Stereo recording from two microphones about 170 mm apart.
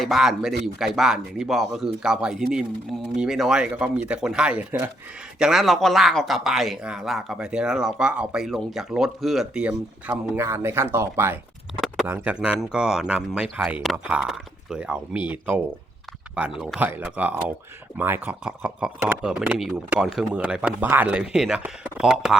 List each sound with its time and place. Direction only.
0.0 s speech: centre (ahead or behind)